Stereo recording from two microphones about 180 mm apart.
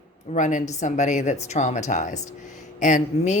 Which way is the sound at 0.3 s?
45° left (ahead or behind).